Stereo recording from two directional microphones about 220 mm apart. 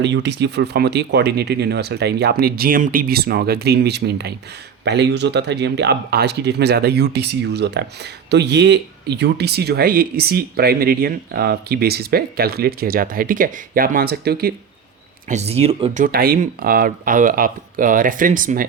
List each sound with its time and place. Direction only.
0.0 s speech: 50° right (ahead or behind)
15.3 s speech: 30° right (ahead or behind)